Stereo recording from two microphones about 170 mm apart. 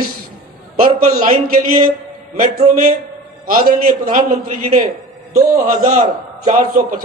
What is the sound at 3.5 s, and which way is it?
A man's voice, 55° right (ahead or behind).